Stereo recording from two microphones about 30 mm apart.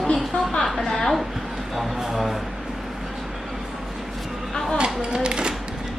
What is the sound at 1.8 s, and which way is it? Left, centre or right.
Speech, centre.